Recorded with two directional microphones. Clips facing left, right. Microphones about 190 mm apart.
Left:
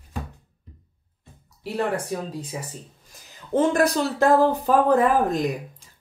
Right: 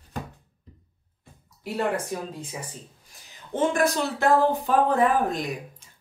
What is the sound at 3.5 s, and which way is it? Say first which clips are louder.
Speech: left 3 dB; 40° left (ahead or behind).